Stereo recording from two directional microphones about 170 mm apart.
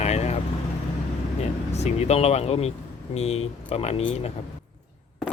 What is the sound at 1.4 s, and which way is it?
Speech, 40° left (ahead or behind).